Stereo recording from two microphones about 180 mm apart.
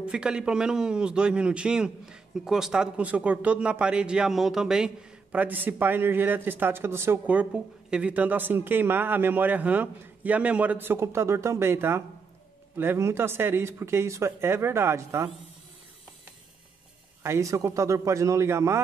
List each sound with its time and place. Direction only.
0.0 s a man's voice: 5° right (ahead or behind)
17.2 s a man's voice: 15° right (ahead or behind)